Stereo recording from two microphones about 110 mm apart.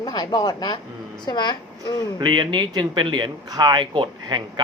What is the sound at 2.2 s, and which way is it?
Speech, 45° right (ahead or behind).